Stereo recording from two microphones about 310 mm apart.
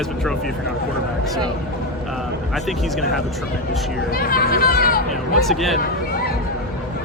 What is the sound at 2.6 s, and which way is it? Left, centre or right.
Speech, centre.